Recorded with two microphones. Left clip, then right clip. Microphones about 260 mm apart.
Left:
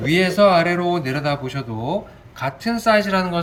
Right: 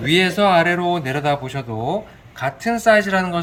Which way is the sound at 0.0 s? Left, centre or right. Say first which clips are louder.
Left 1 dB; centre.